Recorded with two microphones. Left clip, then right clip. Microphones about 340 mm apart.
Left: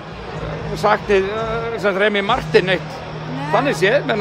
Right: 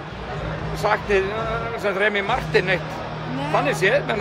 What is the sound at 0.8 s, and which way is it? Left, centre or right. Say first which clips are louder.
Speech: left 4 dB; left.